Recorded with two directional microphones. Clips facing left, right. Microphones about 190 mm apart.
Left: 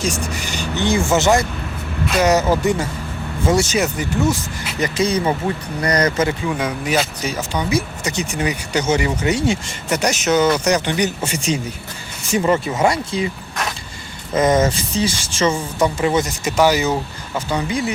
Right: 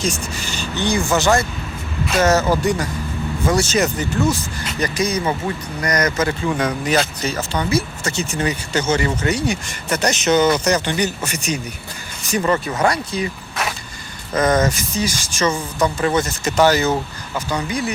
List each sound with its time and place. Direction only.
0.0 s speech: 15° left (ahead or behind)
3.7 s speech: 10° left (ahead or behind)
4.8 s speech: 25° left (ahead or behind)
6.4 s speech: 5° left (ahead or behind); by 10.0 s 25° left (ahead or behind)
10.0 s speech: 10° left (ahead or behind)
11.2 s speech: 30° left (ahead or behind)
14.3 s speech: 25° left (ahead or behind)
17.5 s speech: 25° left (ahead or behind)